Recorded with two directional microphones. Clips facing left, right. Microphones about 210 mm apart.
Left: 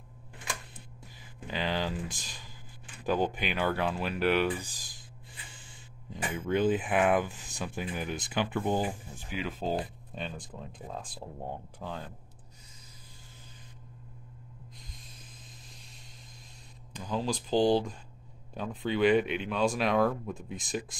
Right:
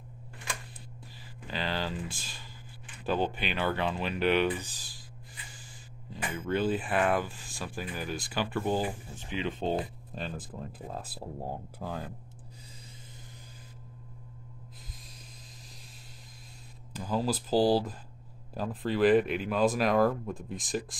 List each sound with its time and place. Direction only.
1.5 s speech: 15° left (ahead or behind)
6.5 s speech: 15° left (ahead or behind); by 12.1 s 10° right (ahead or behind)
16.9 s speech: 5° right (ahead or behind)